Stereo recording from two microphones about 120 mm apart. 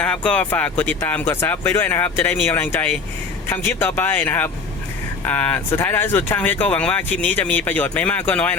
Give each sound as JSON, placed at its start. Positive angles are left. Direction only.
{"t": 0.0, "sound": "speech", "side_deg": 10}